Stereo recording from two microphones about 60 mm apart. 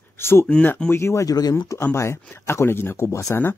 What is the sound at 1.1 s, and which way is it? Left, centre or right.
Speech, left.